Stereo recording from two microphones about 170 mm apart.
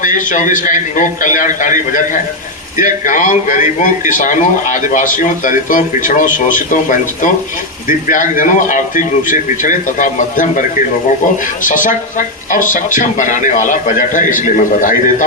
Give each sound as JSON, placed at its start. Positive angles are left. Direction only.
{"t": 0.0, "sound": "speech", "side_deg": 50}